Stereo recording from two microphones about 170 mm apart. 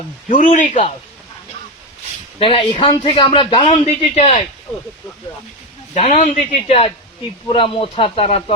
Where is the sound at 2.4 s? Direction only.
30° left (ahead or behind).